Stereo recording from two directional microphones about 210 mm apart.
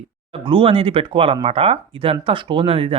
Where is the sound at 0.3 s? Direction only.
25° right (ahead or behind).